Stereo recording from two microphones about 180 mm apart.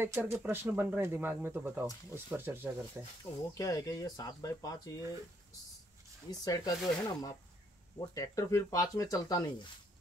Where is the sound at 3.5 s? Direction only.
20° left (ahead or behind).